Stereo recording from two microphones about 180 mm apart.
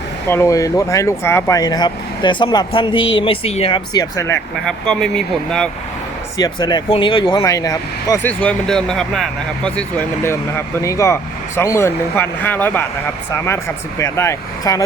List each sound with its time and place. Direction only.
0.3 s speech: 15° left (ahead or behind); by 3.8 s 35° left (ahead or behind)
3.9 s speech: 15° left (ahead or behind)
4.6 s speech: 5° left (ahead or behind)
6.3 s speech: 20° left (ahead or behind)
8.3 s speech: 5° left (ahead or behind)